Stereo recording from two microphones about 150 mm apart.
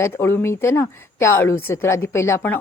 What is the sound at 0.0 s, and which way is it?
A woman's voice, 15° left (ahead or behind).